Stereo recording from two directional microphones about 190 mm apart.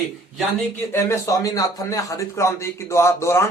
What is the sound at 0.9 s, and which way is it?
Speech, 15° left (ahead or behind).